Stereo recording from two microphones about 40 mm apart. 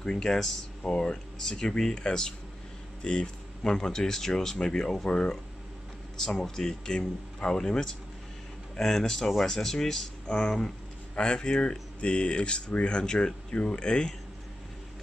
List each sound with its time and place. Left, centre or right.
0.0 s speech: centre
10.2 s speech: left